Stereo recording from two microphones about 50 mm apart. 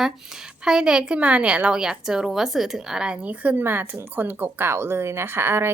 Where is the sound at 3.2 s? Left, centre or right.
Right.